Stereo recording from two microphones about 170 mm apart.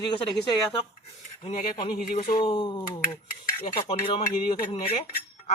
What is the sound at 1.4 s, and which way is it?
Speech, 35° left (ahead or behind).